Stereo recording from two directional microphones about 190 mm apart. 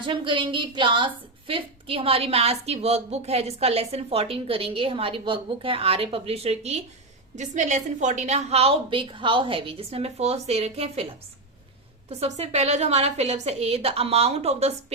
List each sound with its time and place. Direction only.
0.0 s a woman's voice: 25° right (ahead or behind)